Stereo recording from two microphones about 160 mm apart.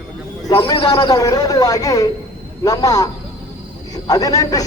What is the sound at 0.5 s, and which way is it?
A man's voice, 30° left (ahead or behind).